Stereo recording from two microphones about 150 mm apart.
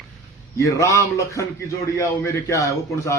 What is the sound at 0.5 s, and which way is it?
A man's voice, 20° left (ahead or behind).